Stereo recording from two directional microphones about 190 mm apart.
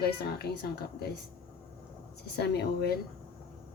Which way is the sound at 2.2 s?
60° left (ahead or behind).